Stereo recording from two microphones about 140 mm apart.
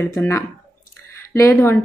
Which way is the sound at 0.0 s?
15° left (ahead or behind).